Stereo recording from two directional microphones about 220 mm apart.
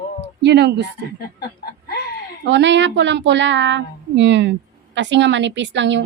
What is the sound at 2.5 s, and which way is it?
A woman's voice, 55° right (ahead or behind).